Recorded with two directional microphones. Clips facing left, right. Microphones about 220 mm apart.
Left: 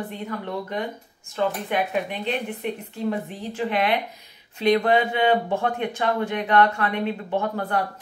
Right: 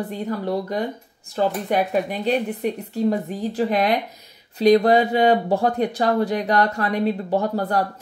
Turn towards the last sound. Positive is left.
turn(degrees=-35)  # may be behind; listen again after turning